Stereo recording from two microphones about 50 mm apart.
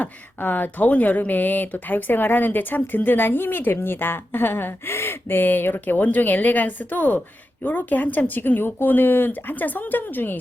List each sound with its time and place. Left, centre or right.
0.0 s speech: left
8.4 s speech: left